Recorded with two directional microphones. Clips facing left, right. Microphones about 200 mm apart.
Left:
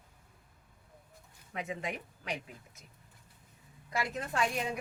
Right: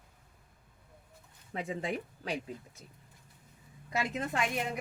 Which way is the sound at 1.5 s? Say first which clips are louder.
Right 3 dB; 30° right (ahead or behind).